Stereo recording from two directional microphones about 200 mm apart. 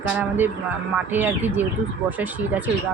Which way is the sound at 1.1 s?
10° right (ahead or behind).